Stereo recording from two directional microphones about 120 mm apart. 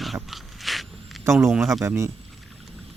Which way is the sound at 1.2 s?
25° right (ahead or behind).